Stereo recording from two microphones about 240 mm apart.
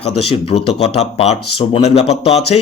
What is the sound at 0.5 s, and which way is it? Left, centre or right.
A man's voice, left.